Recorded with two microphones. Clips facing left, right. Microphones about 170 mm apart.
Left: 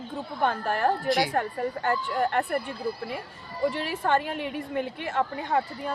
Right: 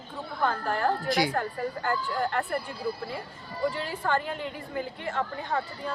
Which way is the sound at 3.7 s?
70° left (ahead or behind).